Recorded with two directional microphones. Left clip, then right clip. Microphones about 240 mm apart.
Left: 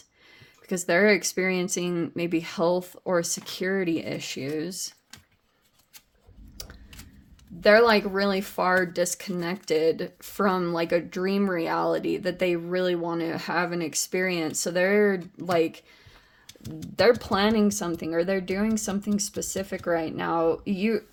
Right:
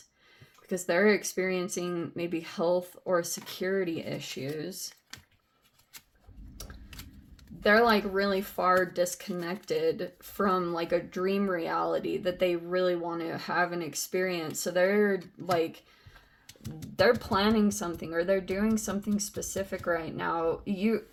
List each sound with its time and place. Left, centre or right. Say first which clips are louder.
0.7 s speech: left 4 dB; left
7.6 s speech: left 5 dB; left
17.0 s speech: left 4 dB; left